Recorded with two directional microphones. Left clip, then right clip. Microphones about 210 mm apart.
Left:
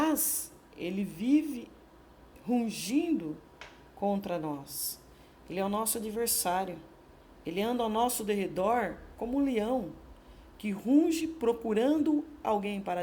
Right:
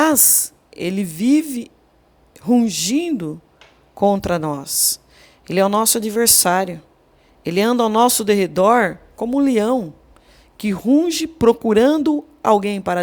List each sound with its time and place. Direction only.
0.0 s a woman's voice: 45° right (ahead or behind)